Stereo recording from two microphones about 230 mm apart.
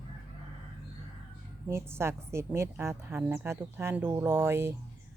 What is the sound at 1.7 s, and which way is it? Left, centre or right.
A woman's voice, centre.